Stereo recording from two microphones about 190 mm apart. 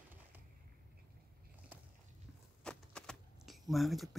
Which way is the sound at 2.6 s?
5° left (ahead or behind).